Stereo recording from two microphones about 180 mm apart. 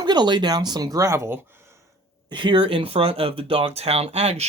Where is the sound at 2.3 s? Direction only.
30° right (ahead or behind).